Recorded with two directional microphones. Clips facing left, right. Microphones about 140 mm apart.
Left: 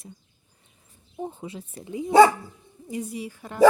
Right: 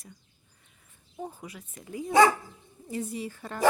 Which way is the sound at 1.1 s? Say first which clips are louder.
Left 5 dB; 20° left (ahead or behind).